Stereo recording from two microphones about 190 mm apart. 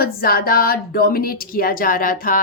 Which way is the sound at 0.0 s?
50° left (ahead or behind).